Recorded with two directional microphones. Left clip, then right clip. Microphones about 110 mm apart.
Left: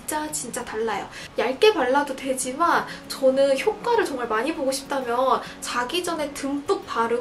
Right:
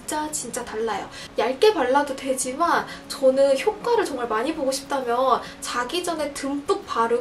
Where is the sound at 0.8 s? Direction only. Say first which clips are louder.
Even; 5° right (ahead or behind).